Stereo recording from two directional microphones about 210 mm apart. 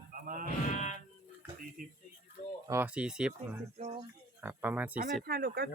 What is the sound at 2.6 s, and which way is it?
Speech, 10° right (ahead or behind).